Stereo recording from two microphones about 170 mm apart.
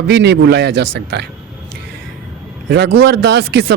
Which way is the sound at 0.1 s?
75° right (ahead or behind).